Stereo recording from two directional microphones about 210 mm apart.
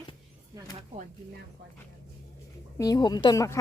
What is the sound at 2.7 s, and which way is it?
Speech, 15° left (ahead or behind).